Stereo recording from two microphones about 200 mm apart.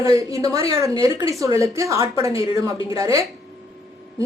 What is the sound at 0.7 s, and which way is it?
A woman's voice, 15° right (ahead or behind).